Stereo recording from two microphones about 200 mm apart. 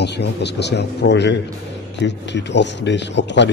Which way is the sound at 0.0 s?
55° left (ahead or behind).